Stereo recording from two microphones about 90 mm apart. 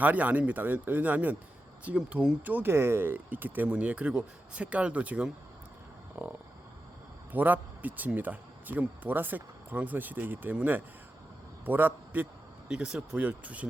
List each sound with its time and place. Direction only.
0.0 s speech: 15° right (ahead or behind)
2.5 s speech: 25° right (ahead or behind)
7.3 s a man's voice: 20° right (ahead or behind)